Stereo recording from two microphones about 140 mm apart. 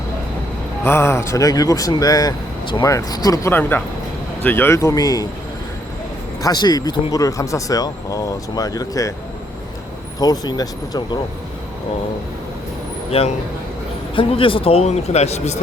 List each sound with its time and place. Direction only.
0.9 s speech: 20° left (ahead or behind)
3.5 s speech: 10° left (ahead or behind)
6.4 s speech: 30° left (ahead or behind)
10.2 s speech: 25° left (ahead or behind)
13.1 s speech: 45° left (ahead or behind)